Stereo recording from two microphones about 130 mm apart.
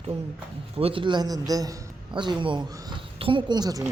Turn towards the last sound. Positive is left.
turn(degrees=-30)  # may be behind; listen again after turning